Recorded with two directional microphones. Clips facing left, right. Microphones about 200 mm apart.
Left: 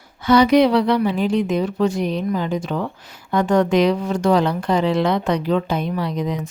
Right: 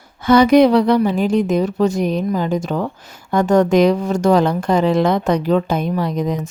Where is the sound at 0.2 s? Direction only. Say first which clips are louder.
Right 3 dB; 50° right (ahead or behind).